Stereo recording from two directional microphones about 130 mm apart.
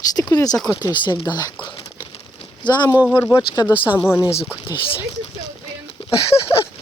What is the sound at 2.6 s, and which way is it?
Speech, 35° left (ahead or behind).